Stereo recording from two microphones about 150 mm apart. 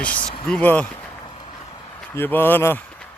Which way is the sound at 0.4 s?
10° left (ahead or behind).